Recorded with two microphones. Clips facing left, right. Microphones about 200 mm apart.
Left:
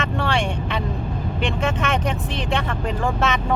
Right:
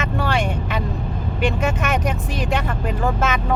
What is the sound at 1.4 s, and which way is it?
Speech, 10° right (ahead or behind).